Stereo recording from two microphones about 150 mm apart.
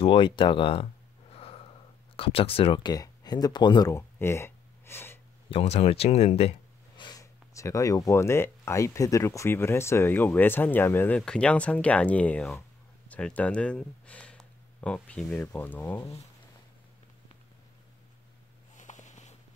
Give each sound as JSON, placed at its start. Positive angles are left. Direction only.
{"t": 0.0, "sound": "speech", "side_deg": 35}
{"t": 1.3, "sound": "snort", "side_deg": 40}
{"t": 2.1, "sound": "speech", "side_deg": 40}
{"t": 5.5, "sound": "speech", "side_deg": 45}
{"t": 7.0, "sound": "speech", "side_deg": 25}
{"t": 18.8, "sound": "a sound", "side_deg": 55}